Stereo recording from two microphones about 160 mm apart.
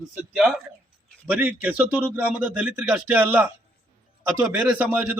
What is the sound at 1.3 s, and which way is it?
A man's voice, 10° right (ahead or behind).